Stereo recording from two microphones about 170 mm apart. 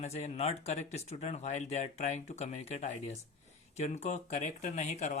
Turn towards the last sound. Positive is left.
turn(degrees=45)  # may be behind; listen again after turning